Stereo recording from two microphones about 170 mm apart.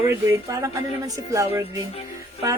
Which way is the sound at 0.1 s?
15° right (ahead or behind).